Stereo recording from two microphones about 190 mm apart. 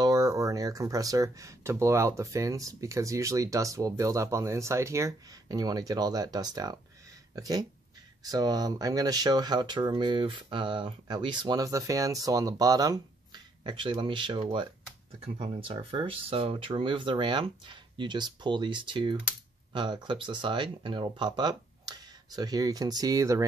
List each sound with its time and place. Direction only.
0.0 s speech: 20° right (ahead or behind)